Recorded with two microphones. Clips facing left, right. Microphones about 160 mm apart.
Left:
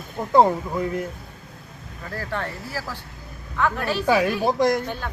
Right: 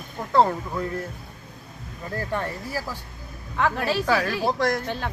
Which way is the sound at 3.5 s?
30° right (ahead or behind).